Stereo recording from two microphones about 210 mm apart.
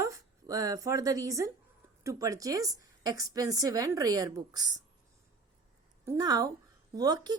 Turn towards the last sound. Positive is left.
turn(degrees=-15)  # may be behind; listen again after turning